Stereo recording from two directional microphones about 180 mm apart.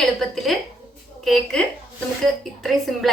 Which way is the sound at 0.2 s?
Centre (ahead or behind).